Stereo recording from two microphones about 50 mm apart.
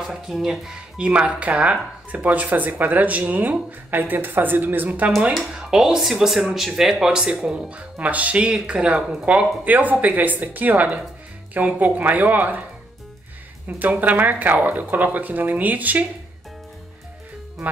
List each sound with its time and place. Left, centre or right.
0.0 s speech: centre
1.0 s speech: right
5.5 s speech: centre
8.0 s speech: right
13.7 s speech: right